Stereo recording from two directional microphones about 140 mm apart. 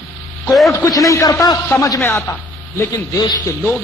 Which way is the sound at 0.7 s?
25° left (ahead or behind).